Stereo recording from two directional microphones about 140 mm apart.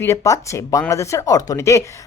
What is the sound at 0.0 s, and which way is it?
Speech, 20° left (ahead or behind).